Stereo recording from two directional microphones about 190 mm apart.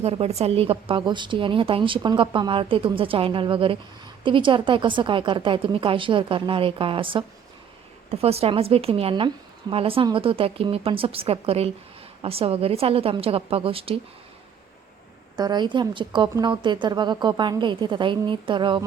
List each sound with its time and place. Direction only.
0.0 s a woman's voice: 30° right (ahead or behind)
15.4 s a woman's voice: 20° right (ahead or behind)